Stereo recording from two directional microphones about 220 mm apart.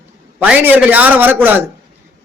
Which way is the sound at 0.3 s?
5° right (ahead or behind).